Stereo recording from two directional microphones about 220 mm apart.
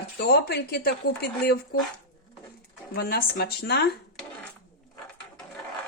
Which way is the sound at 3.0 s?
45° left (ahead or behind).